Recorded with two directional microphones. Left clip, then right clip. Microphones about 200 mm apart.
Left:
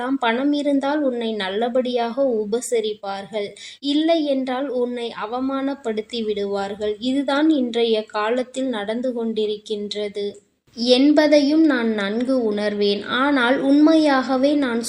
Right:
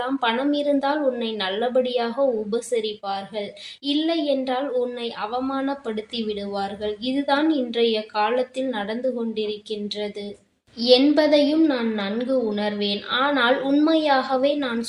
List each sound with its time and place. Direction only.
0.0 s a woman's voice: 40° left (ahead or behind)
10.8 s speech: 45° left (ahead or behind)